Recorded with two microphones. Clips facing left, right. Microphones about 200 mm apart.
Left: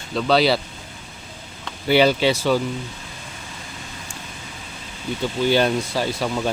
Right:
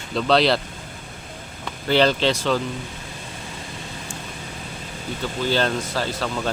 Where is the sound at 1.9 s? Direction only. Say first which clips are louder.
Left 2 dB; 10° left (ahead or behind).